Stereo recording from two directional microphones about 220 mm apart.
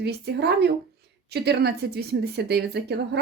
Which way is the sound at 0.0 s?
50° right (ahead or behind).